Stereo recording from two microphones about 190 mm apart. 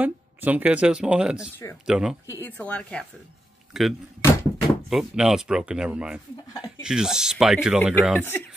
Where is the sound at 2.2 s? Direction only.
10° left (ahead or behind).